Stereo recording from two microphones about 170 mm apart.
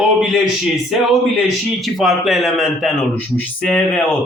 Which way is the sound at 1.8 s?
Centre (ahead or behind).